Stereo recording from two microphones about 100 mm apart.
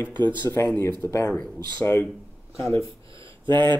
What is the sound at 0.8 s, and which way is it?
Speech, 25° left (ahead or behind).